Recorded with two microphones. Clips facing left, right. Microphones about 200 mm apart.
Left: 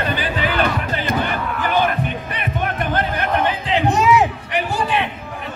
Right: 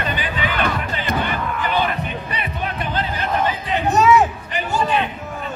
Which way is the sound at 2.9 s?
60° left (ahead or behind).